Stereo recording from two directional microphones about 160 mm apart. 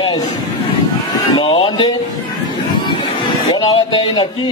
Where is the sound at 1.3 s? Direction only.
35° left (ahead or behind).